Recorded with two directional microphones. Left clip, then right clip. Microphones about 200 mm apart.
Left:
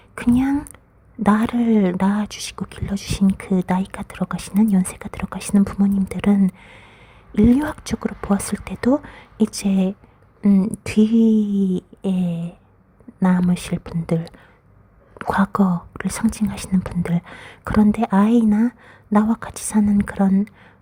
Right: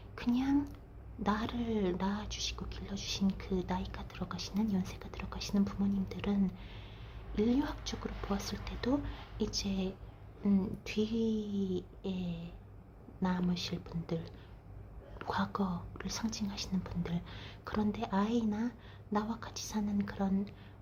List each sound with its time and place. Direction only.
0.2 s speech: 50° left (ahead or behind)
10.4 s speech: 40° left (ahead or behind)
10.7 s speech: 50° left (ahead or behind)